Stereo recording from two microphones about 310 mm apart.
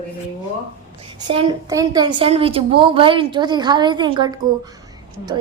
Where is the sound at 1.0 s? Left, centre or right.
Centre.